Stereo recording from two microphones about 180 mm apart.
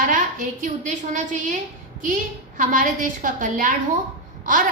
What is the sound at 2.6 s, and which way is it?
A woman's voice, 45° right (ahead or behind).